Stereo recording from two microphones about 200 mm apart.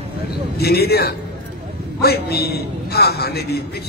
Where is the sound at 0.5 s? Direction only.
50° left (ahead or behind).